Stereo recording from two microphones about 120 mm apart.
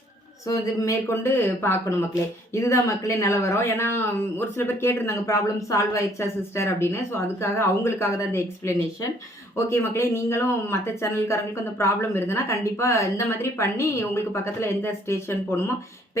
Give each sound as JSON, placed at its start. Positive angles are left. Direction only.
{"t": 0.4, "sound": "speech", "side_deg": 25}